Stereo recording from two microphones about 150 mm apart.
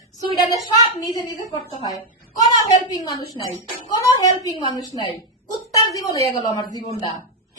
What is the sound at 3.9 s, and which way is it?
A woman's voice, 25° left (ahead or behind).